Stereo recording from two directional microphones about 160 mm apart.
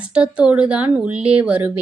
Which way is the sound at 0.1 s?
5° right (ahead or behind).